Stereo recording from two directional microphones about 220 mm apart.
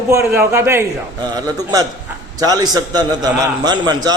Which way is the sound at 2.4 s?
15° right (ahead or behind).